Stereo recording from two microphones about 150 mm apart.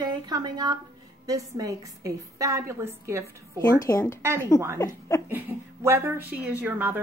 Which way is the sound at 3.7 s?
20° left (ahead or behind).